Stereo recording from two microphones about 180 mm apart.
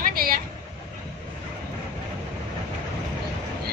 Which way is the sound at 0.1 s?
55° right (ahead or behind).